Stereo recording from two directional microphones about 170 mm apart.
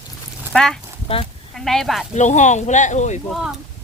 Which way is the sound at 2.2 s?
45° left (ahead or behind).